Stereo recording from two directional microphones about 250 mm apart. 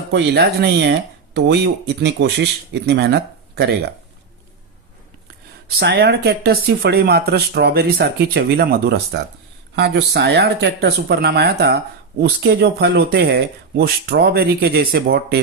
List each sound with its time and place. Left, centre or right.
0.1 s speech: right
5.6 s speech: right